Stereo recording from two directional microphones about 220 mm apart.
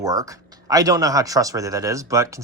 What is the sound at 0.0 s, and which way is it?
Speech, 15° right (ahead or behind).